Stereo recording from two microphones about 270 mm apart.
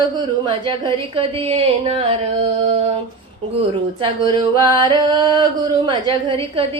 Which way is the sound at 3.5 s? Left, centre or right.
Right.